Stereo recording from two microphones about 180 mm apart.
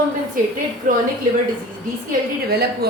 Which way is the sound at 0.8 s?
50° right (ahead or behind).